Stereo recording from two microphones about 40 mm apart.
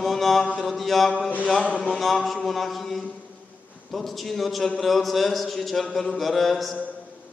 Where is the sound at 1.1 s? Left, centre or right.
Left.